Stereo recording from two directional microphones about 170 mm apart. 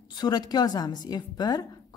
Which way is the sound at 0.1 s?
25° left (ahead or behind).